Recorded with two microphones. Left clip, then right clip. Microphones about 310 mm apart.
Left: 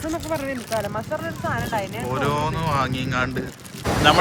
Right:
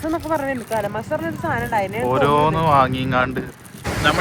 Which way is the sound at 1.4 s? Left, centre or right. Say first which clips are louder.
Right 4 dB; right.